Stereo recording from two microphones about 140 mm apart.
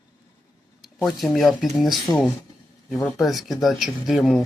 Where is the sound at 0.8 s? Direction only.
Centre (ahead or behind).